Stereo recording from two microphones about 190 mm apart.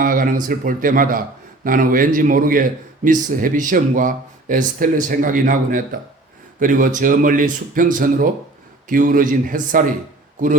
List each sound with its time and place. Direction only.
0.0 s a man's voice: 45° right (ahead or behind)